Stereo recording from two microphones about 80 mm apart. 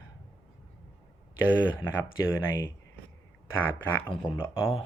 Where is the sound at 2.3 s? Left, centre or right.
Left.